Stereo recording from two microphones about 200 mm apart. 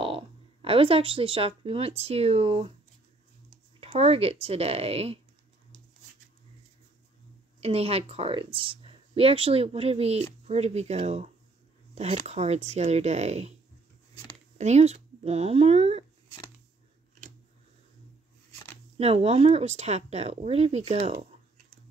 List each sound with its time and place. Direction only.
0.0 s speech: 25° right (ahead or behind)
3.8 s speech: 30° right (ahead or behind)
7.6 s speech: 30° right (ahead or behind)
14.6 s speech: 35° right (ahead or behind)
18.9 s speech: 30° right (ahead or behind)